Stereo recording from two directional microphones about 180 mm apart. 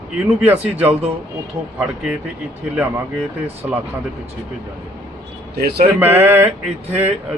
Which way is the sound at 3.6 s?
10° right (ahead or behind).